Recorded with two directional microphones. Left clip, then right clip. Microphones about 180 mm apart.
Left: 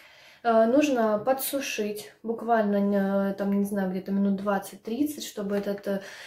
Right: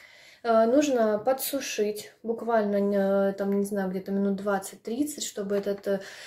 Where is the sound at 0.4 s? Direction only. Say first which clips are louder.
Left 1 dB; 25° right (ahead or behind).